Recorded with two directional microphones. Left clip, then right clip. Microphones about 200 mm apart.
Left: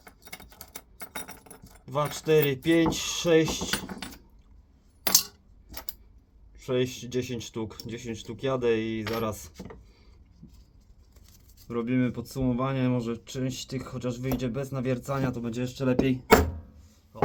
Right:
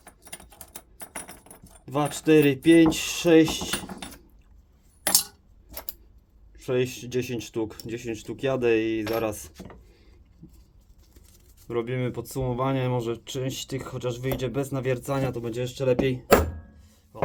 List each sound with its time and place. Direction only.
0.6 s a sound: 25° left (ahead or behind)
1.8 s speech: 35° right (ahead or behind)
6.6 s speech: 40° right (ahead or behind)
11.7 s speech: 35° right (ahead or behind)